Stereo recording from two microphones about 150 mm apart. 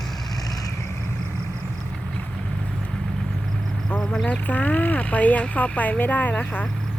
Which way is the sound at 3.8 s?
5° left (ahead or behind).